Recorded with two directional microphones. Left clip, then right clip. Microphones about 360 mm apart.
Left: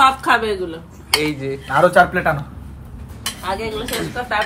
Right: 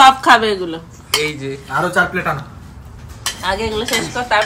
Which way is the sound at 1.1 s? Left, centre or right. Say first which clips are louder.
Even; centre.